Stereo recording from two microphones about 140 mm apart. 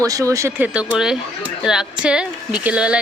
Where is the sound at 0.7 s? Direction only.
10° right (ahead or behind).